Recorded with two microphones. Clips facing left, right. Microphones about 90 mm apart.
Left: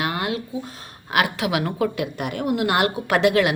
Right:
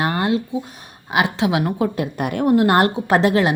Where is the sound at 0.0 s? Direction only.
30° right (ahead or behind).